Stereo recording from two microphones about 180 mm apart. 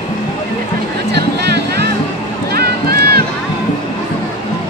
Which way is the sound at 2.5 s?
60° right (ahead or behind).